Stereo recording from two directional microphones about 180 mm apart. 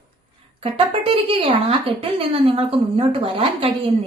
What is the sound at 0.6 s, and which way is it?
Speech, 30° right (ahead or behind).